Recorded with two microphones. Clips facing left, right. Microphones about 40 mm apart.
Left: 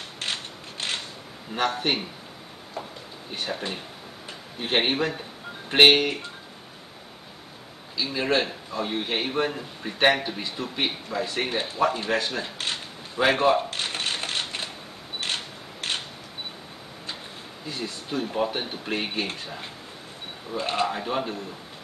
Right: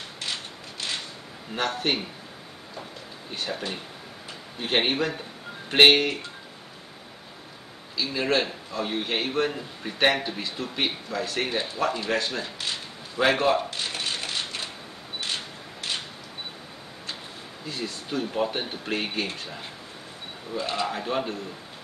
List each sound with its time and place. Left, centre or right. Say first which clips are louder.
0.2 s mechanisms: left 2 dB; left
1.8 s a man's voice: even; centre
3.3 s a man's voice: left 1 dB; centre
8.1 s a man's voice: left 1 dB; centre
11.4 s speech: even; left
12.1 s a man's voice: left 1 dB; centre
12.6 s a sound: left 2 dB; left
13.2 s a man's voice: left 1 dB; centre
13.7 s a sound: left 2 dB; left
15.2 s camera: left 2 dB; left
15.8 s single-lens reflex camera: left 2 dB; left
17.6 s speech: even; centre
20.5 s speech: left 2 dB; left
20.9 s speech: even; centre